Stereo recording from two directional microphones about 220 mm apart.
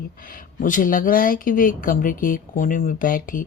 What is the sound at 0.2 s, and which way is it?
Speech, 40° left (ahead or behind).